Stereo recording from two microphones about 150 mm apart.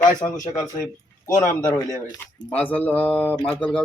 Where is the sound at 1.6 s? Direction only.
25° left (ahead or behind).